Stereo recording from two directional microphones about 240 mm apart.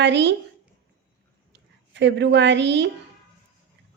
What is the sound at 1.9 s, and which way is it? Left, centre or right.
A woman's voice, right.